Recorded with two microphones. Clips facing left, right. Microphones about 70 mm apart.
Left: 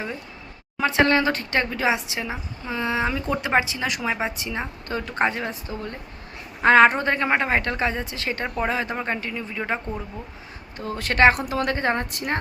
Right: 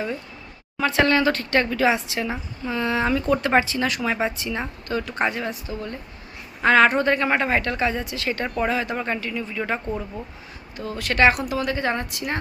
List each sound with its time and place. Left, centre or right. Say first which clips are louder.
0.8 s speech: even; left
10.8 s a woman's voice: left 1 dB; left